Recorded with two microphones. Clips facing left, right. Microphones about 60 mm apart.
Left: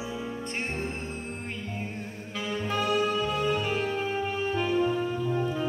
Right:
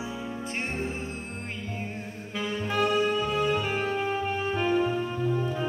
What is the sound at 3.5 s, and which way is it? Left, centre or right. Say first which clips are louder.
Music: right 1 dB; right.